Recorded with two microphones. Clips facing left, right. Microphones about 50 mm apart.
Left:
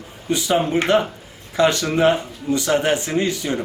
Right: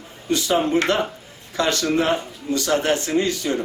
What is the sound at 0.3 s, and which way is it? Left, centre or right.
A man's voice, centre.